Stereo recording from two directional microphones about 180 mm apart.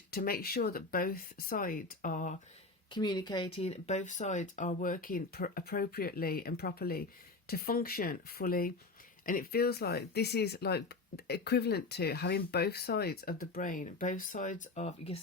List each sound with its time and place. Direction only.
0.1 s speech: 55° left (ahead or behind)
2.9 s speech: 20° left (ahead or behind)